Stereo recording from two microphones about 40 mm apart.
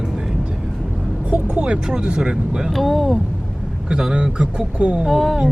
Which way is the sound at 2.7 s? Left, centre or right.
Centre.